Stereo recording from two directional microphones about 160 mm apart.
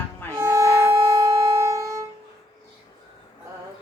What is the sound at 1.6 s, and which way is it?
Music, 20° right (ahead or behind).